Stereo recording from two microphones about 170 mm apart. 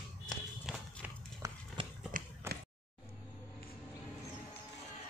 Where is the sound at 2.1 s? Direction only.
50° right (ahead or behind).